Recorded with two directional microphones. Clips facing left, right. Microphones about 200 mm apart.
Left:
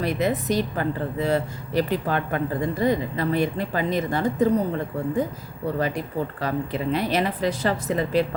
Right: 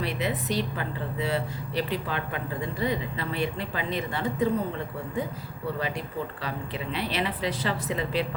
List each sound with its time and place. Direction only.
0.0 s speech: 45° left (ahead or behind)
6.4 s speech: 45° left (ahead or behind)